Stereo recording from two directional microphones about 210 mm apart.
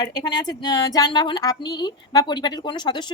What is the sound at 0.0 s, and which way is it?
Speech, 20° left (ahead or behind).